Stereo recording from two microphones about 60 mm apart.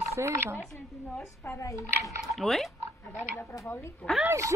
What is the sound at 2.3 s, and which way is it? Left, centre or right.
Speech, centre.